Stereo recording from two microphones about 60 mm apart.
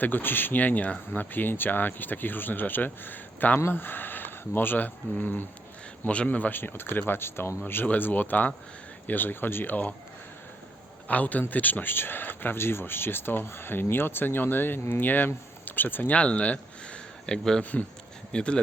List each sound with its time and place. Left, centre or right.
0.0 s speech: left
7.9 s speech: left
11.1 s speech: left
16.1 s speech: left
17.6 s speech: left